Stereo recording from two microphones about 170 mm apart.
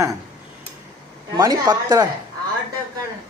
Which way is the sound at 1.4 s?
20° right (ahead or behind).